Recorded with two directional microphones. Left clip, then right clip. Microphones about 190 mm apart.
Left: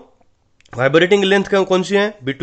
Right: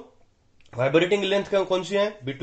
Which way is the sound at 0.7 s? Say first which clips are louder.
Left 8 dB; 55° left (ahead or behind).